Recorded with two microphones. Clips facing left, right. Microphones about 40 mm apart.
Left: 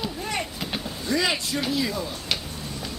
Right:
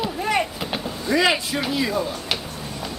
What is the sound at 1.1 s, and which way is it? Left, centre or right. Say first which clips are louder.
Speech: right 5 dB; right.